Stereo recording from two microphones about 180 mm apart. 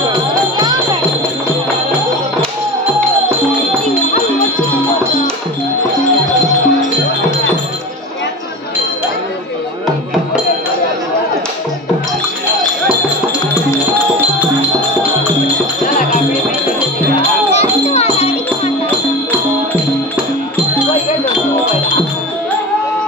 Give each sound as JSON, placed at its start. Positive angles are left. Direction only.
{"t": 17.5, "sound": "children playing", "side_deg": 35}